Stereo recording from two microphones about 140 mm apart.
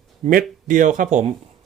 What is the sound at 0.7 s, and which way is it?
Speech, 65° right (ahead or behind).